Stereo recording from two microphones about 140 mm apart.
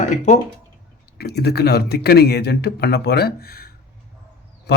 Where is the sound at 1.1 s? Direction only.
90° left.